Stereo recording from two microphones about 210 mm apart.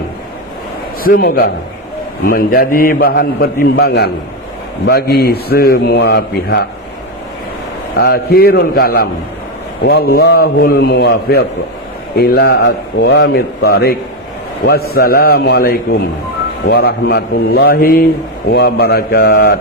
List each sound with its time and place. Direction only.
1.0 s a man's voice: 45° left (ahead or behind)
7.9 s a man's voice: 50° left (ahead or behind)